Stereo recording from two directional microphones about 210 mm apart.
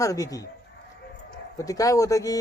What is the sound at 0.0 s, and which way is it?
Speech, 15° left (ahead or behind).